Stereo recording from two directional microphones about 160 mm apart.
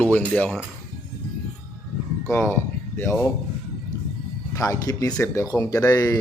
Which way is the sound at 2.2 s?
15° left (ahead or behind).